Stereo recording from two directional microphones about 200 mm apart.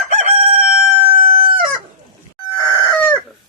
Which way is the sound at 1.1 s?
25° right (ahead or behind).